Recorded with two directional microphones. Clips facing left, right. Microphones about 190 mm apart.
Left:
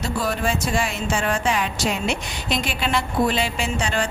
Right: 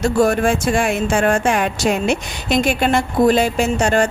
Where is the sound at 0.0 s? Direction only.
50° right (ahead or behind).